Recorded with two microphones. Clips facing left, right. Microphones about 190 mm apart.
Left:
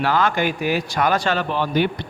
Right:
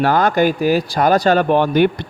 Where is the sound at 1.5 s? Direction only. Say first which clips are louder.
Right 7 dB; 55° right (ahead or behind).